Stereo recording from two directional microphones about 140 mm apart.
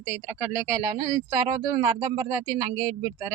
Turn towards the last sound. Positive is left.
turn(degrees=-20)  # may be behind; listen again after turning